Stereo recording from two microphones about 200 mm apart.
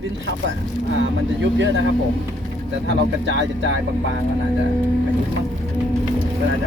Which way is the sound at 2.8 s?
65° right (ahead or behind).